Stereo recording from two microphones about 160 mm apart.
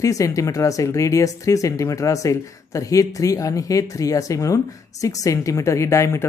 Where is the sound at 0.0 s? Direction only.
20° left (ahead or behind).